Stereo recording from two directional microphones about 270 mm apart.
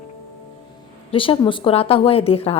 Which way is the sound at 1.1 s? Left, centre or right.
Centre.